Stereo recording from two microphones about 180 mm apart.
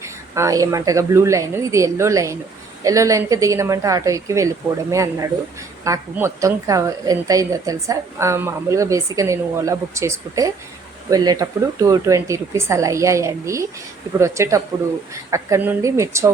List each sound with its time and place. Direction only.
0.0 s a woman's voice: 15° right (ahead or behind)